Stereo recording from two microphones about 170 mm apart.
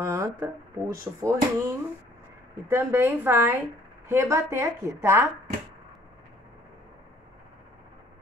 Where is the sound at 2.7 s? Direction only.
15° right (ahead or behind).